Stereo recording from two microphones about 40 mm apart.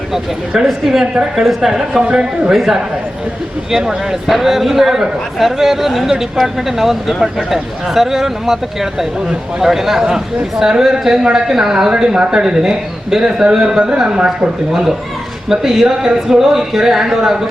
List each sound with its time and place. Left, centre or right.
0.1 s a man's voice: centre
2.0 s speech: right
2.5 s a man's voice: centre